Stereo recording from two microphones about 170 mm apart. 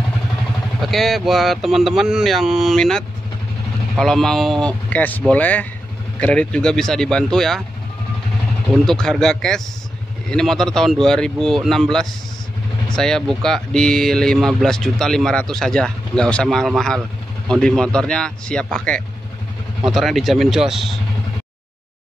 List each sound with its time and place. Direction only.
0.8 s speech: centre (ahead or behind)
8.8 s speech: 5° left (ahead or behind)